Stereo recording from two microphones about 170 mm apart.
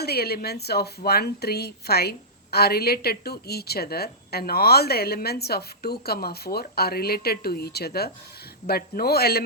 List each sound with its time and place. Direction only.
0.0 s a woman's voice: 65° left (ahead or behind)